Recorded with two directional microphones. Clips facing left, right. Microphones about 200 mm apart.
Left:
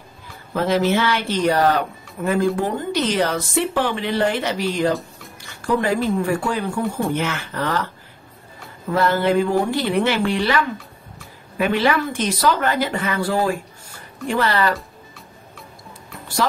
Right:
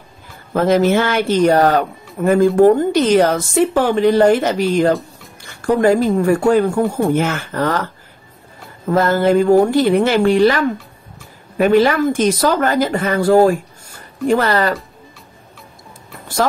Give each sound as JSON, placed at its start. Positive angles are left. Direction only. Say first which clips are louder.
{"t": 0.5, "sound": "speech", "louder": "right 5 dB", "side_deg": -45}
{"t": 8.9, "sound": "speech", "louder": "right 4 dB", "side_deg": -45}